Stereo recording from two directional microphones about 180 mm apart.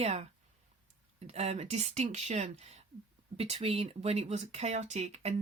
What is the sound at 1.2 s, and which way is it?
Speech, 35° right (ahead or behind).